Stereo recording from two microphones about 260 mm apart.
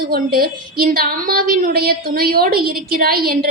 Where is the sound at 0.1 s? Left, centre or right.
Right.